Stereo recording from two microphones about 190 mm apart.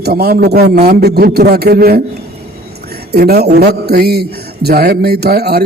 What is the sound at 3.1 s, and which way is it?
A man's voice, 55° right (ahead or behind).